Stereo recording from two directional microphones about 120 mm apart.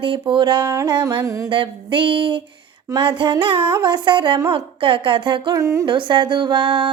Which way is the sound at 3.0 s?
40° right (ahead or behind).